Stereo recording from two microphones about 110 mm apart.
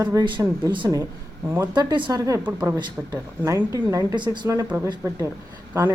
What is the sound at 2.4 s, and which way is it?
Speech, 15° right (ahead or behind).